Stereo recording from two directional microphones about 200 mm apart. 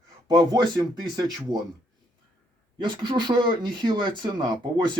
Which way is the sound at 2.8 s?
20° right (ahead or behind).